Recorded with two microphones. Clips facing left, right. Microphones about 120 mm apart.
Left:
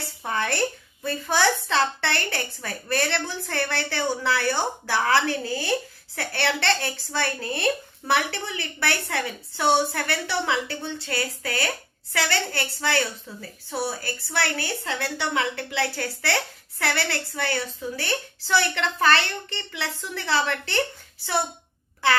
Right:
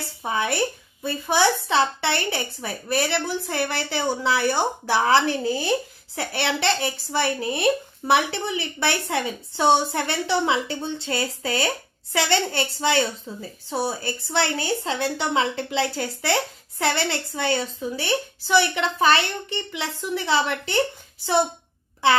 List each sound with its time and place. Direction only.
0.2 s a woman's voice: 10° right (ahead or behind)